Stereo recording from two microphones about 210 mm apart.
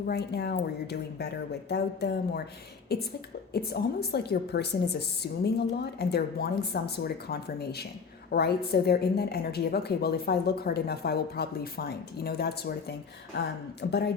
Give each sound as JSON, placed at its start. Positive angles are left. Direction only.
{"t": 0.1, "sound": "a woman's voice", "side_deg": 50}